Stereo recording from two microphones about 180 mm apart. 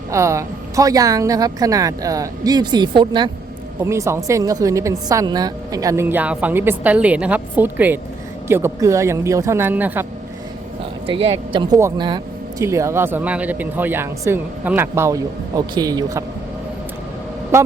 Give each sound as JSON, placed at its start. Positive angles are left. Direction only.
{"t": 0.1, "sound": "a woman's voice", "side_deg": -15}
{"t": 11.0, "sound": "speech", "side_deg": -30}